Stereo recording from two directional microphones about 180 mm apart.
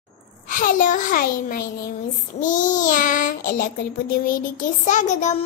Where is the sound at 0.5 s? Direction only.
50° left (ahead or behind).